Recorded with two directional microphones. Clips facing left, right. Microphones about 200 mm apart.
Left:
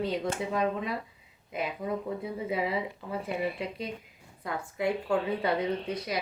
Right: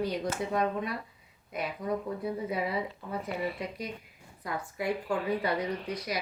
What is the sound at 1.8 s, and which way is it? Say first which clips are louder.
Speech: right 2 dB; 50° left (ahead or behind).